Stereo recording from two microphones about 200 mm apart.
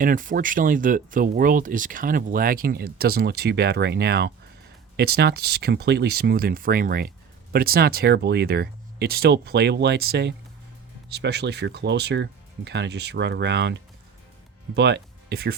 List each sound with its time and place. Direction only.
0.0 s speech: 40° right (ahead or behind)